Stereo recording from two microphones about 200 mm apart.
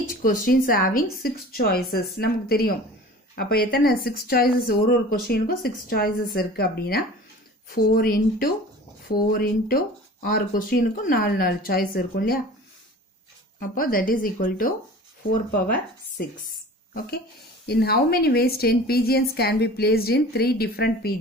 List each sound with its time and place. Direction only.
0.1 s speech: 45° left (ahead or behind)
13.6 s speech: 45° left (ahead or behind)
17.6 s speech: 50° left (ahead or behind)